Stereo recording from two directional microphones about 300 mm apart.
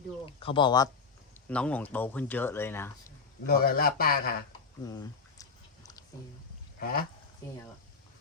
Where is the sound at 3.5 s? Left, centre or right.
Left.